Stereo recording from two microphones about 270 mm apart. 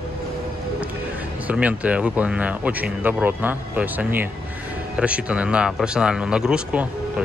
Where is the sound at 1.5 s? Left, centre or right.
Centre.